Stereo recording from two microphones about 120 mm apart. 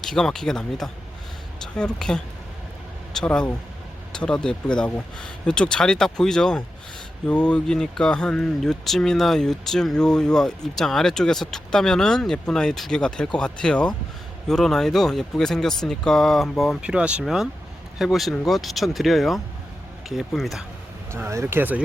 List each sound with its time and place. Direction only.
0.0 s speech: 5° left (ahead or behind)
21.1 s speech: 20° right (ahead or behind)